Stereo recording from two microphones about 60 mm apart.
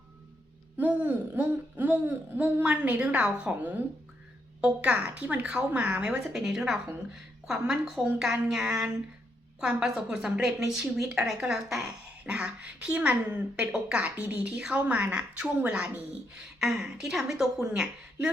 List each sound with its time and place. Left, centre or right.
0.8 s a woman's voice: right
4.6 s a woman's voice: centre
12.2 s a woman's voice: centre
16.3 s a woman's voice: centre